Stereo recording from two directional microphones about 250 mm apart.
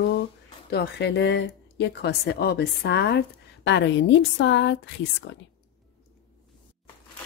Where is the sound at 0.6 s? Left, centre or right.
Left.